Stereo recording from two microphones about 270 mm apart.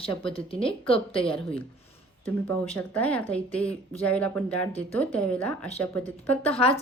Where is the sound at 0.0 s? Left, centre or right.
Centre.